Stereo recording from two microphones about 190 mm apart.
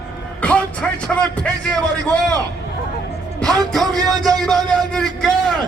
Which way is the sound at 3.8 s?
20° right (ahead or behind).